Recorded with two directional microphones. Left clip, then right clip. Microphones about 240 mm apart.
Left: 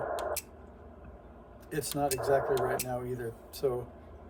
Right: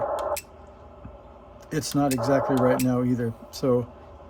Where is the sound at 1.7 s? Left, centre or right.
Right.